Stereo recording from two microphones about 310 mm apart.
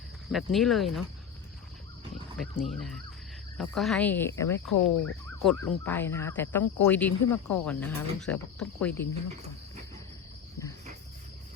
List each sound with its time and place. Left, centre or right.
0.3 s speech: centre
2.4 s speech: centre